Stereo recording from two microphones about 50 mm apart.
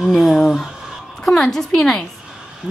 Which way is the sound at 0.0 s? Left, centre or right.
Centre.